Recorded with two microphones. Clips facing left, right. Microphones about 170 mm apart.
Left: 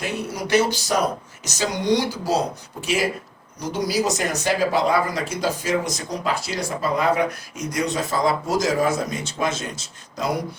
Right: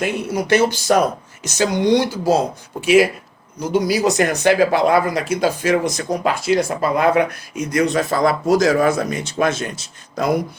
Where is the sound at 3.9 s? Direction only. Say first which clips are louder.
Right 2 dB; 65° right (ahead or behind).